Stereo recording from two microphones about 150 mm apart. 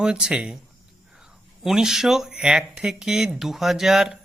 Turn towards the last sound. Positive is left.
turn(degrees=-5)  # may be behind; listen again after turning